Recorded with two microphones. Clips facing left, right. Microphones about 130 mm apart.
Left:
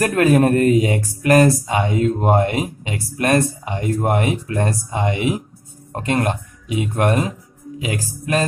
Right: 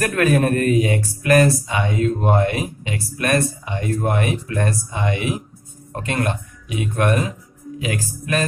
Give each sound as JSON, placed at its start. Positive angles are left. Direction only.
{"t": 0.0, "sound": "speech", "side_deg": 30}